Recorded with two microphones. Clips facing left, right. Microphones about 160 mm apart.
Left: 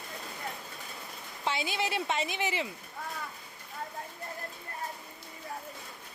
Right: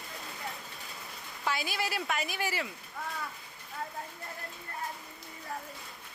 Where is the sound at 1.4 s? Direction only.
25° left (ahead or behind).